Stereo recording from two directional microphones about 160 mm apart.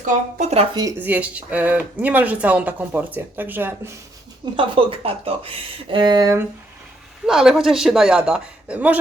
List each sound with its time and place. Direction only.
0.0 s speech: 45° right (ahead or behind)
0.9 s speech: 10° right (ahead or behind)
4.5 s speech: 35° right (ahead or behind)
7.3 s speech: 5° right (ahead or behind)